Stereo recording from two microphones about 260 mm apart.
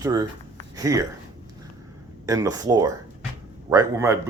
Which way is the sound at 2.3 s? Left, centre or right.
Centre.